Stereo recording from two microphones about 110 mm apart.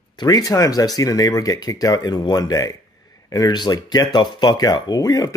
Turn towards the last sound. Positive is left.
turn(degrees=35)  # may be behind; listen again after turning